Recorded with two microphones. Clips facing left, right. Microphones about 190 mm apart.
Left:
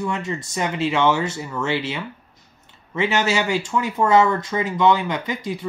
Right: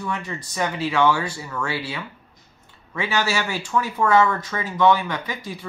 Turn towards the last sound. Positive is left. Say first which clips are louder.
# left 4 dB
turn(degrees=20)  # may be behind; listen again after turning